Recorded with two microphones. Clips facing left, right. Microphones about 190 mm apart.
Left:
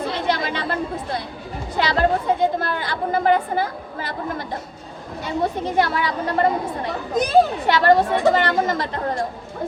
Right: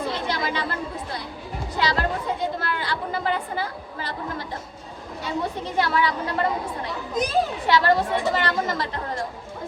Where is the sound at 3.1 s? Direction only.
50° left (ahead or behind).